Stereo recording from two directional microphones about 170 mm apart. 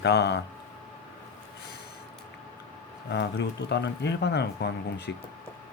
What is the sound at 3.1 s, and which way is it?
Speech, 90° left.